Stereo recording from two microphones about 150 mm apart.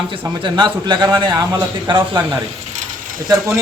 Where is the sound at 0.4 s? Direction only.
30° right (ahead or behind).